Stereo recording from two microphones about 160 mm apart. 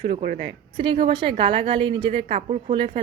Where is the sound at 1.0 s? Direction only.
30° right (ahead or behind).